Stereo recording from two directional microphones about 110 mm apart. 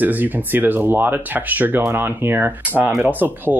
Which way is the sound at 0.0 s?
15° right (ahead or behind).